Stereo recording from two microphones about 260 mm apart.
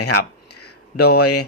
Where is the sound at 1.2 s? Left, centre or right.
Left.